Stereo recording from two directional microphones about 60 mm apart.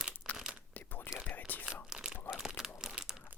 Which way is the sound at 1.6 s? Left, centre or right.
Centre.